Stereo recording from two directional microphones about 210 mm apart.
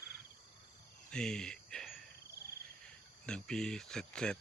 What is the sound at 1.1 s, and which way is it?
Cricket, 5° left (ahead or behind).